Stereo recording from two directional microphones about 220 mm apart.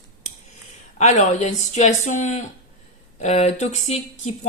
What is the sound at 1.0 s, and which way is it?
Speech, 30° left (ahead or behind).